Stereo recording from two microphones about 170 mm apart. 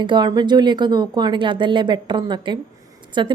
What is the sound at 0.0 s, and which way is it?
Speech, 25° right (ahead or behind).